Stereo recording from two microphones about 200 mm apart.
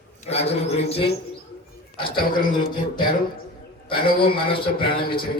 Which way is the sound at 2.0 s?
45° left (ahead or behind).